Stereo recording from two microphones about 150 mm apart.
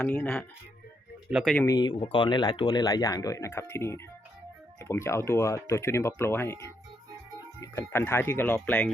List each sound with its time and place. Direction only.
0.0 s speech: 5° left (ahead or behind)
1.3 s speech: 5° right (ahead or behind)
1.5 s speech: 20° left (ahead or behind)